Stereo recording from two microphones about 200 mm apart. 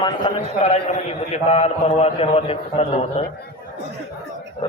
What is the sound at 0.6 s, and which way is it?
A man's voice, 35° left (ahead or behind).